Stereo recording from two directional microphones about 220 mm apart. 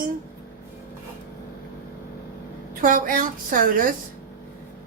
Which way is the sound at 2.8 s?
40° right (ahead or behind).